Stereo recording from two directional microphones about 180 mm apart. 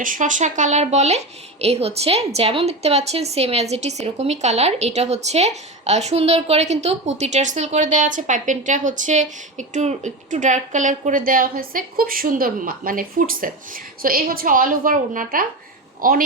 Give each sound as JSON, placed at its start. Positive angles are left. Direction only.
{"t": 0.0, "sound": "a woman's voice", "side_deg": -45}